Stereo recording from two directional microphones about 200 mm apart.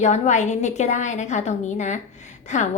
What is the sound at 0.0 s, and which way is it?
A woman's voice, 35° left (ahead or behind).